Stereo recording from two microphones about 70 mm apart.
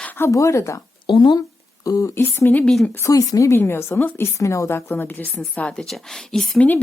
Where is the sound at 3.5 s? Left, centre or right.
Left.